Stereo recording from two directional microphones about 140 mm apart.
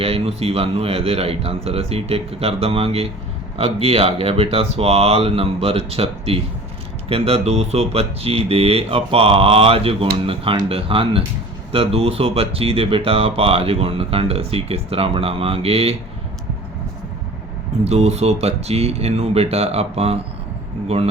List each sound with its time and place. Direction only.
0.0 s speech: 45° right (ahead or behind)
17.8 s speech: 50° right (ahead or behind)